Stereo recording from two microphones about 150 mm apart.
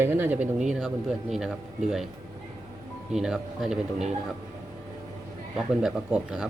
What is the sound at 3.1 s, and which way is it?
Speech, 5° right (ahead or behind).